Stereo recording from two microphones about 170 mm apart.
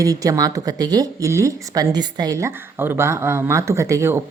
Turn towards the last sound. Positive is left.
turn(degrees=-15)  # may be behind; listen again after turning